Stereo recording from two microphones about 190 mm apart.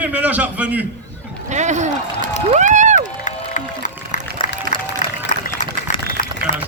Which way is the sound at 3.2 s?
40° left (ahead or behind).